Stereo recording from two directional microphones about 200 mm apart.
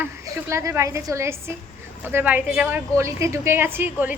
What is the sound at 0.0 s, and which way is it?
A woman's voice, 10° right (ahead or behind).